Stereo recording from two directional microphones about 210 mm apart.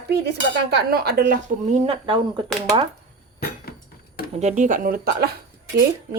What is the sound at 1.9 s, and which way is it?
Speech, 25° right (ahead or behind).